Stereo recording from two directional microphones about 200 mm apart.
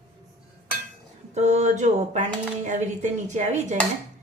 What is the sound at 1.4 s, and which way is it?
Speech, 35° right (ahead or behind).